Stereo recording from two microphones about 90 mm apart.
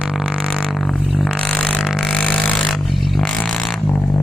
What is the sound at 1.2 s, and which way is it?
Vehicle, 15° left (ahead or behind).